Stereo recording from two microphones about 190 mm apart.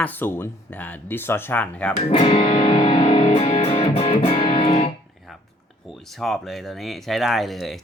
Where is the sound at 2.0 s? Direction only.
30° left (ahead or behind).